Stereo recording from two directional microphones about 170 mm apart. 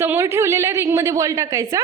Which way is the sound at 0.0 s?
15° right (ahead or behind).